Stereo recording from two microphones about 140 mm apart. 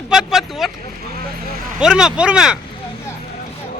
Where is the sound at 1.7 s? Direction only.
5° right (ahead or behind).